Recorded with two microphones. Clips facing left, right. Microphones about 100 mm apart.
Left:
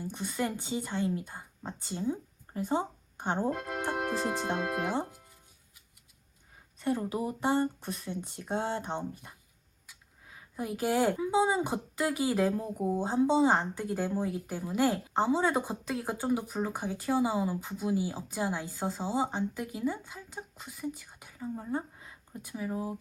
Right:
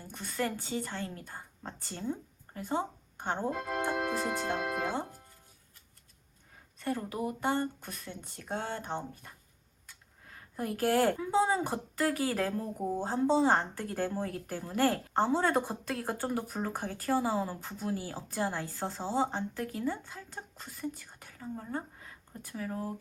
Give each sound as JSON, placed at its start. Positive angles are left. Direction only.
{"t": 0.0, "sound": "a woman's voice", "side_deg": 15}
{"t": 4.8, "sound": "speech", "side_deg": 5}
{"t": 6.7, "sound": "speech", "side_deg": 15}